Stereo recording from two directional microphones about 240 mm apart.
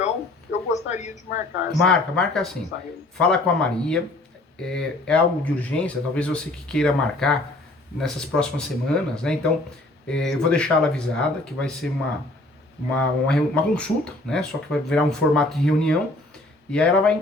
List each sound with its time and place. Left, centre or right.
0.7 s speech: left
1.7 s speech: centre
13.0 s speech: centre